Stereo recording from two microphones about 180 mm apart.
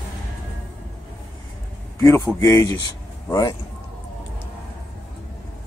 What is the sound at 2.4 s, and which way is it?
A man's voice, 15° left (ahead or behind).